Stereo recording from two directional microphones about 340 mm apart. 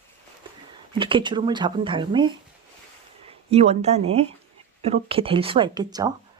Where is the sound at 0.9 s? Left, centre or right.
Centre.